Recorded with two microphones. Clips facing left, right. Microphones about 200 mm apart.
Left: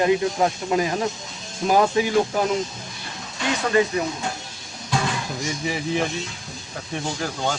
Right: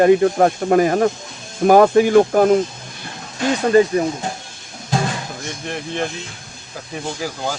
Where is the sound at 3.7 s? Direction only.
35° right (ahead or behind).